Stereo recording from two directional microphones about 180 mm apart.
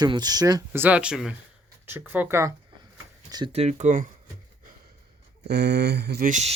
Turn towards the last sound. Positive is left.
turn(degrees=-40)  # may be behind; listen again after turning